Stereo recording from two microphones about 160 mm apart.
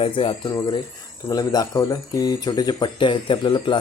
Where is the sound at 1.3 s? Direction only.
25° left (ahead or behind).